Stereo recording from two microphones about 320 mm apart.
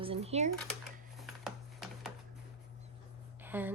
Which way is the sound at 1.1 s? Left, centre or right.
Centre.